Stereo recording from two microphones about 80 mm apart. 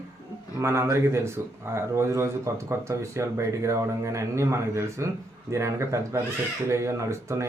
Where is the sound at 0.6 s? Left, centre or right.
Right.